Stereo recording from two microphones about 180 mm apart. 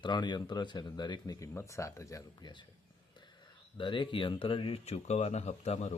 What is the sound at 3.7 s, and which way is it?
Speech, 25° left (ahead or behind).